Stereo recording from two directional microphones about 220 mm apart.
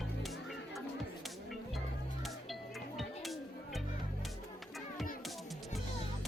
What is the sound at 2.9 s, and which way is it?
Music, centre (ahead or behind).